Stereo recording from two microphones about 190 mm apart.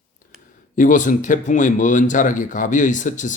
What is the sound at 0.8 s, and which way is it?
Speech, 45° left (ahead or behind).